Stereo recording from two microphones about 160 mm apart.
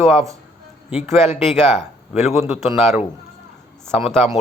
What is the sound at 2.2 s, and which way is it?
A man's voice, 5° right (ahead or behind).